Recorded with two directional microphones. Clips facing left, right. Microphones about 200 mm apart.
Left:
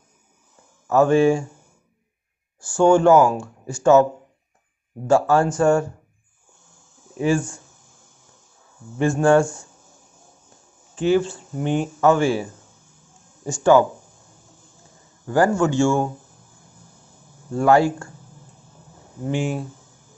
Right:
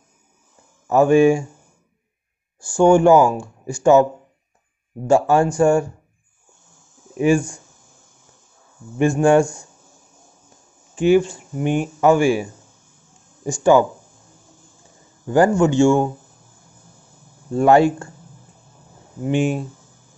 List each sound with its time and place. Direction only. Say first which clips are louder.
0.8 s speech: right 3 dB; 15° right (ahead or behind)
2.6 s speech: right 2 dB; 15° right (ahead or behind)
7.2 s speech: right 4 dB; 15° right (ahead or behind)
8.9 s speech: right 2 dB; 15° right (ahead or behind)
11.0 s speech: right 4 dB; 15° right (ahead or behind)
15.2 s speech: right 3 dB; 20° right (ahead or behind)
17.6 s speech: right 3 dB; 20° right (ahead or behind)
19.2 s speech: right 4 dB; 20° right (ahead or behind)